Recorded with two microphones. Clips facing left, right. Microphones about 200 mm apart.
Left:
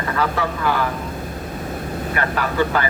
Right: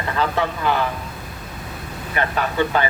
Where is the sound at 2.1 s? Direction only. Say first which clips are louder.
Even; 20° right (ahead or behind).